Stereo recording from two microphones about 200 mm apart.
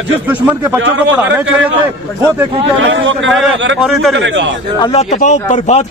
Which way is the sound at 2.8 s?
70° right (ahead or behind).